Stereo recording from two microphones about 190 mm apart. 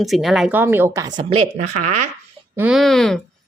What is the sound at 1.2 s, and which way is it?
Speech, 30° right (ahead or behind).